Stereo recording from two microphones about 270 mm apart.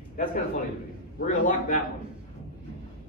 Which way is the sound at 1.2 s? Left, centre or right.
Left.